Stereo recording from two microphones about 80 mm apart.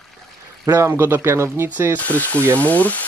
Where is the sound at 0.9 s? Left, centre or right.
Right.